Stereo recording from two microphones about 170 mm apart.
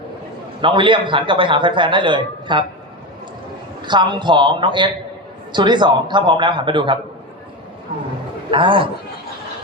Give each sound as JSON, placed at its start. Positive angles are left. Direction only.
{"t": 0.6, "sound": "a man's voice", "side_deg": -30}
{"t": 3.8, "sound": "a man's voice", "side_deg": -25}
{"t": 8.4, "sound": "a man's voice", "side_deg": -30}